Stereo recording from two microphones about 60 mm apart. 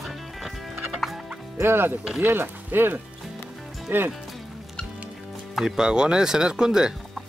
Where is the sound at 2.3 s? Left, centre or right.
Right.